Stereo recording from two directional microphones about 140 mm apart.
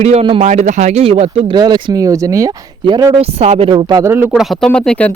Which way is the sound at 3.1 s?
50° right (ahead or behind).